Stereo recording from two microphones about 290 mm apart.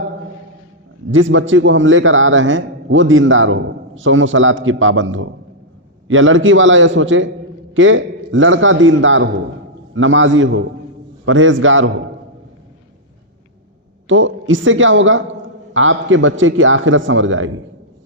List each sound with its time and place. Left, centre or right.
1.1 s a man's voice: right
14.1 s a man's voice: right